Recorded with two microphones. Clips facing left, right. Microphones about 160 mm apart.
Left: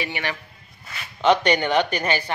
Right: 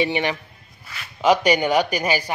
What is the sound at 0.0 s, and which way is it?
Speech, 20° right (ahead or behind).